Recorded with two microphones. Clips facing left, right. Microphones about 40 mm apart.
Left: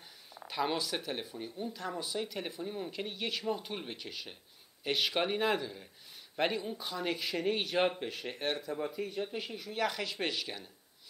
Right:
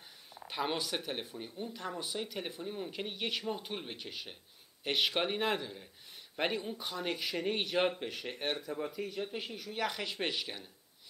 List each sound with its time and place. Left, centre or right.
0.5 s speech: centre